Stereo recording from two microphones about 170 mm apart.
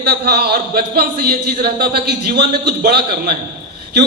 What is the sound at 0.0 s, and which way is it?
A man's voice, 70° right (ahead or behind).